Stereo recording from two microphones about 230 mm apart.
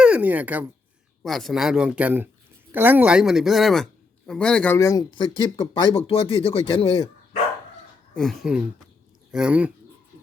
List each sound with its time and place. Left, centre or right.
0.0 s speech: centre; by 7.1 s left
8.1 s speech: centre